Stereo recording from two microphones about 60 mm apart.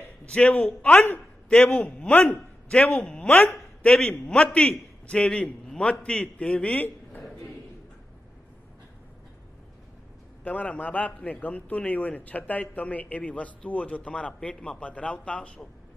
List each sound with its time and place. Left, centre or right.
0.3 s a man's voice: centre
10.4 s a man's voice: left